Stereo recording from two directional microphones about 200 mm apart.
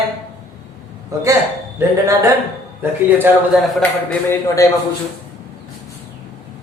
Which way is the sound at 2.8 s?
10° right (ahead or behind).